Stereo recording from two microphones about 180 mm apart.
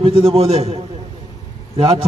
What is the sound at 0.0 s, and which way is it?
Speech, 30° right (ahead or behind).